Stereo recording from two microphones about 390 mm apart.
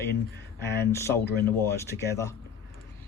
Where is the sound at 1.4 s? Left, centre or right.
Centre.